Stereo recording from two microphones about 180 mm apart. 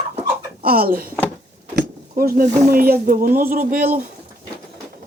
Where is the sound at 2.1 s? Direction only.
55° right (ahead or behind).